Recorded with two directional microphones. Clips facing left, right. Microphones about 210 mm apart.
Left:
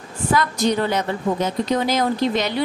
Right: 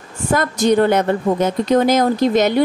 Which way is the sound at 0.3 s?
50° right (ahead or behind).